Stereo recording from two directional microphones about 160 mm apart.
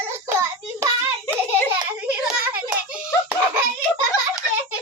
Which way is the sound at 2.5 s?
10° right (ahead or behind).